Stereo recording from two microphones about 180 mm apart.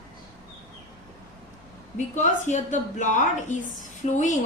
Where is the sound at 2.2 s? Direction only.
40° left (ahead or behind).